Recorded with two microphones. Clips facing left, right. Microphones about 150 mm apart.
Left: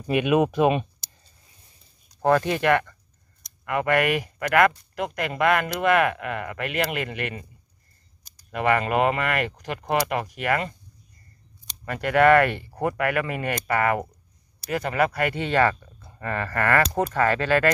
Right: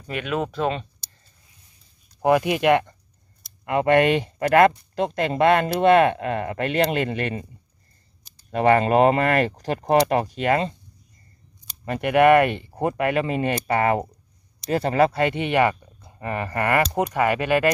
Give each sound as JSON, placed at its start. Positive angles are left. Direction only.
{"t": 0.0, "sound": "speech", "side_deg": 15}
{"t": 2.2, "sound": "speech", "side_deg": -15}
{"t": 11.8, "sound": "speech", "side_deg": -20}